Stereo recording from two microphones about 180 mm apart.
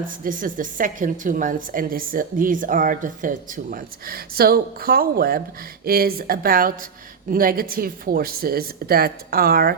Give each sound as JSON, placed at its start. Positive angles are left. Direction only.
{"t": 0.0, "sound": "a woman's voice", "side_deg": -50}